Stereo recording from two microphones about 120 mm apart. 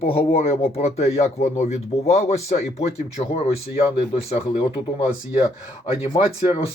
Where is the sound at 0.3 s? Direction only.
55° left (ahead or behind).